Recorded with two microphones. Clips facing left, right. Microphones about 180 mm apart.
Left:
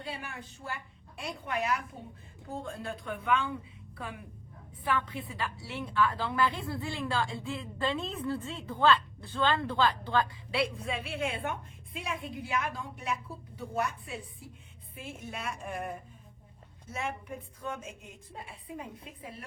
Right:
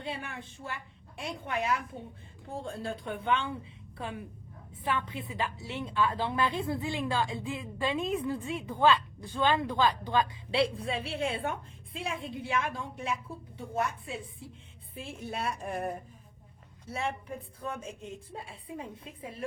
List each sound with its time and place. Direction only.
0.0 s a woman's voice: 25° right (ahead or behind)
10.5 s a woman's voice: 30° right (ahead or behind)